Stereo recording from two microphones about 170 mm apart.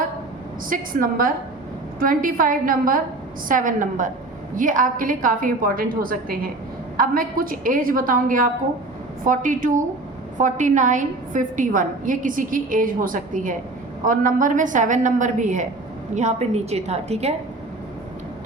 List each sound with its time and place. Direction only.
0.7 s a woman's voice: 55° right (ahead or behind); by 17.3 s 40° right (ahead or behind)